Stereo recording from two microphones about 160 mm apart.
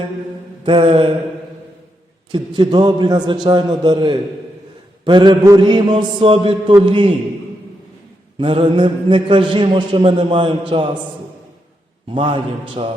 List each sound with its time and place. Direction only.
0.6 s a man's voice: 35° right (ahead or behind)
2.3 s a man's voice: 30° right (ahead or behind)
8.4 s a man's voice: 30° right (ahead or behind)
12.1 s a man's voice: 30° right (ahead or behind)